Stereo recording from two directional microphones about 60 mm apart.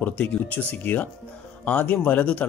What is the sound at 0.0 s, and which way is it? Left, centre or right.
Speech, left.